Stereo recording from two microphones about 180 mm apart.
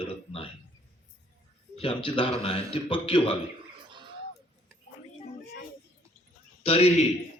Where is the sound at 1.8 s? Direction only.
30° left (ahead or behind).